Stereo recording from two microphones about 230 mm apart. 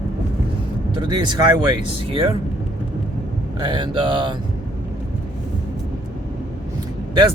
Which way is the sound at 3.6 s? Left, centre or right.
Right.